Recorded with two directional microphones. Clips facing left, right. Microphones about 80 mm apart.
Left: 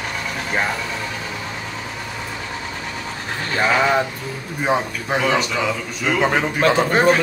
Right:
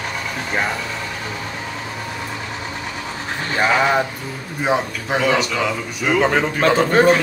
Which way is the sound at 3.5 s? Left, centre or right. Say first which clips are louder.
Right 1 dB; centre.